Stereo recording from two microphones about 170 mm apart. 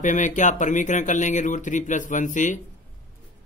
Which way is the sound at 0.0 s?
45° left (ahead or behind).